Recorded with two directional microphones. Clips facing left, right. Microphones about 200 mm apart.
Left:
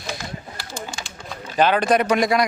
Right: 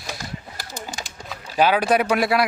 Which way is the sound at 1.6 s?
10° right (ahead or behind).